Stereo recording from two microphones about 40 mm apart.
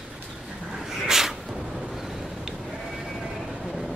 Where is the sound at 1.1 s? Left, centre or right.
Centre.